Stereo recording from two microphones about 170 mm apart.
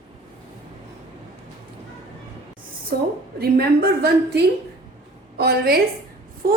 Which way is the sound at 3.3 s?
65° right (ahead or behind).